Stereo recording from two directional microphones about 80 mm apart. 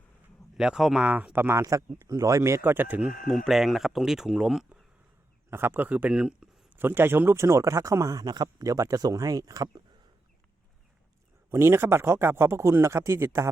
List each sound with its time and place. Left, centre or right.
0.5 s speech: centre
1.0 s speech: centre
1.3 s speech: right
1.6 s speech: right
3.2 s speech: centre
5.5 s speech: right; by 6.5 s centre
6.7 s speech: right
8.2 s speech: right
11.5 s speech: right